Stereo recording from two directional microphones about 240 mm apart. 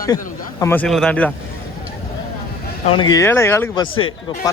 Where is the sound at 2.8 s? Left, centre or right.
Left.